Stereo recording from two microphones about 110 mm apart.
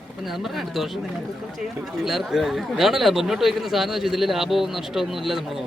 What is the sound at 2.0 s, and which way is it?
Speech, 5° right (ahead or behind).